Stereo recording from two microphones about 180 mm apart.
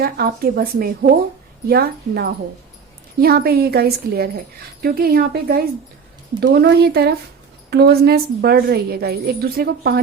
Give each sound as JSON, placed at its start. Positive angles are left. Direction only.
{"t": 0.0, "sound": "a woman's voice", "side_deg": -55}
{"t": 6.4, "sound": "a woman's voice", "side_deg": -70}